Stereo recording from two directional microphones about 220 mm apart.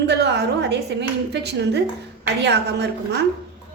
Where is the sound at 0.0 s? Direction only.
50° right (ahead or behind).